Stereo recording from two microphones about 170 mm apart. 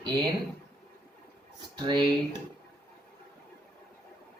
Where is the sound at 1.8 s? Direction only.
25° right (ahead or behind).